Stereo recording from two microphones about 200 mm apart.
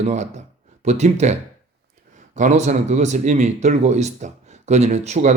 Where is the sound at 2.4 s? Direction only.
35° right (ahead or behind).